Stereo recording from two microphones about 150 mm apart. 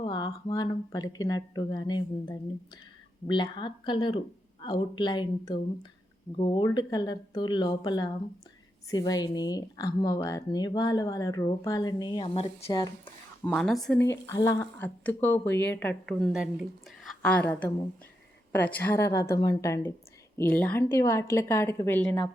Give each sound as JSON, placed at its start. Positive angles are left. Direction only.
{"t": 0.0, "sound": "a woman's voice", "side_deg": 35}
{"t": 13.6, "sound": "speech", "side_deg": 0}
{"t": 14.1, "sound": "a woman's voice", "side_deg": 20}
{"t": 14.8, "sound": "speech", "side_deg": 10}
{"t": 16.0, "sound": "a woman's voice", "side_deg": 0}